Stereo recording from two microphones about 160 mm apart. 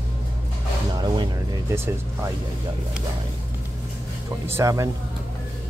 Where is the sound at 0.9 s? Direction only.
25° right (ahead or behind).